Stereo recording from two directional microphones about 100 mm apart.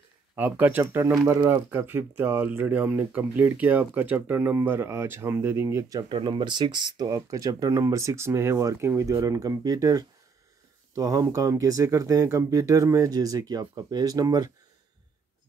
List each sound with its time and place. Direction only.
0.4 s speech: 20° right (ahead or behind)
6.1 s speech: 55° right (ahead or behind)
7.1 s speech: 35° right (ahead or behind)